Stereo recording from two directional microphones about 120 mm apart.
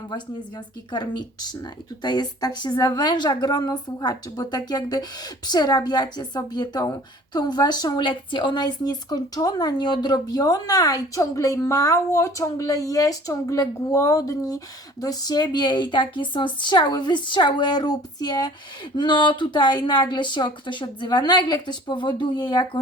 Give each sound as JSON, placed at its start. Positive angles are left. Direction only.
{"t": 0.9, "sound": "speech", "side_deg": 35}